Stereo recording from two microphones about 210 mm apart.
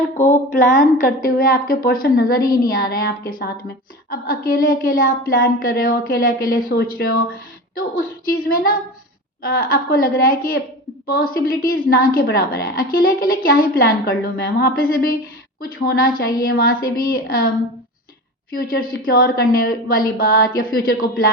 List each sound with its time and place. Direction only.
0.2 s speech: 40° left (ahead or behind)
18.5 s speech: 45° left (ahead or behind)